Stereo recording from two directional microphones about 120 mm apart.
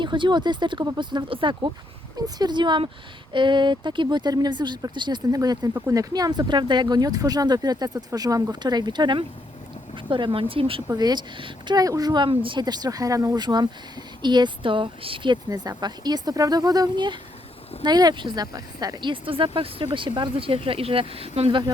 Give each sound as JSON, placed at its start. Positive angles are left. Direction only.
{"t": 0.0, "sound": "speech", "side_deg": -40}
{"t": 2.1, "sound": "speech", "side_deg": -35}
{"t": 10.8, "sound": "speech", "side_deg": -35}